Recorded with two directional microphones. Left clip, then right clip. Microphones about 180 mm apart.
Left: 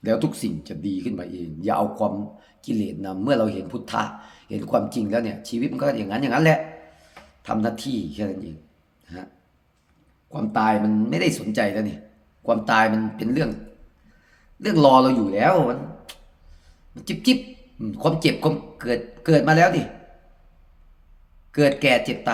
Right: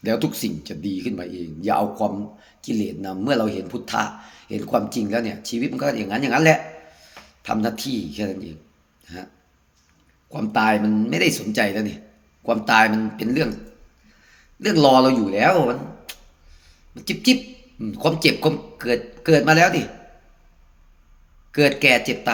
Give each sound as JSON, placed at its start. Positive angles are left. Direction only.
{"t": 0.0, "sound": "speech", "side_deg": 10}
{"t": 10.2, "sound": "speech", "side_deg": 10}
{"t": 14.6, "sound": "speech", "side_deg": 15}
{"t": 21.5, "sound": "speech", "side_deg": 15}